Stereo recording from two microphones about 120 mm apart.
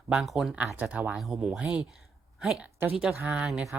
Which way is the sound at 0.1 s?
5° right (ahead or behind).